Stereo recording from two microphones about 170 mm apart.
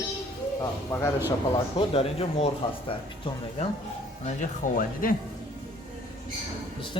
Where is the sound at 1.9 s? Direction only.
35° left (ahead or behind).